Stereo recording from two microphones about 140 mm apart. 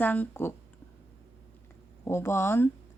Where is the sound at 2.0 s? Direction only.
20° left (ahead or behind).